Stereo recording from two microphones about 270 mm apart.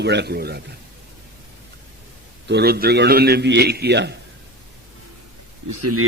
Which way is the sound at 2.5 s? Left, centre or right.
Right.